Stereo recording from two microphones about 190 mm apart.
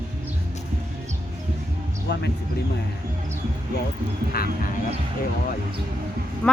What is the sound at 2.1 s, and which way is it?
Speech, 60° left (ahead or behind).